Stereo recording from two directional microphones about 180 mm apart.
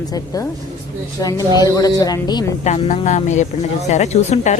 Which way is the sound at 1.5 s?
20° left (ahead or behind).